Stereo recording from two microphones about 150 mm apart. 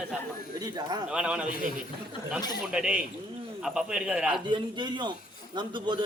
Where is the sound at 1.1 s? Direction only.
5° right (ahead or behind).